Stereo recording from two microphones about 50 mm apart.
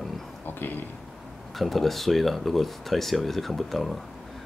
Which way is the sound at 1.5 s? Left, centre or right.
Centre.